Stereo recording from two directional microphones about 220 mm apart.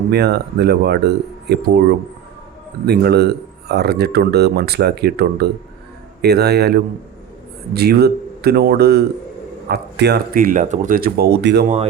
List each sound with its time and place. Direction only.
0.1 s speech: 45° right (ahead or behind)
2.8 s speech: 45° right (ahead or behind)